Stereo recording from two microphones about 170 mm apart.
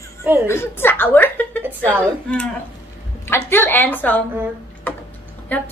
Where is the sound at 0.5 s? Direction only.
15° left (ahead or behind).